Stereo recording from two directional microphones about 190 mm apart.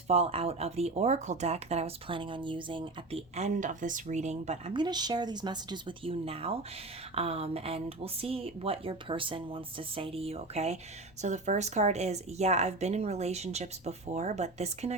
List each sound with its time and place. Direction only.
0.1 s speech: 30° right (ahead or behind)